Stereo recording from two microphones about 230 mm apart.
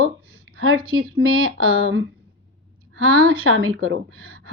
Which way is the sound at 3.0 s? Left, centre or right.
Right.